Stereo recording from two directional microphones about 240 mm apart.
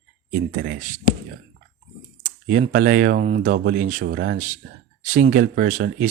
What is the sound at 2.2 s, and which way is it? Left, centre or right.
Speech, right.